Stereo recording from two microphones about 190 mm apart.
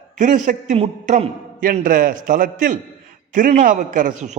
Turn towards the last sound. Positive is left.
turn(degrees=-40)  # may be behind; listen again after turning